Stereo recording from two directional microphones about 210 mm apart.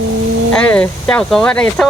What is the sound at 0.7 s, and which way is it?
Speech, 5° left (ahead or behind).